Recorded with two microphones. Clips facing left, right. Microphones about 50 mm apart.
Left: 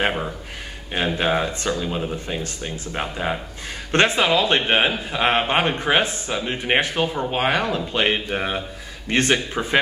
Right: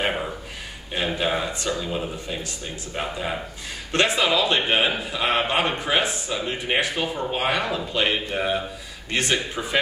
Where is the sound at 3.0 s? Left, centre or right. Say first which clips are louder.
Left 2 dB; left.